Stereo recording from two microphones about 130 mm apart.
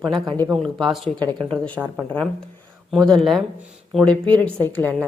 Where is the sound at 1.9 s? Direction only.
5° left (ahead or behind).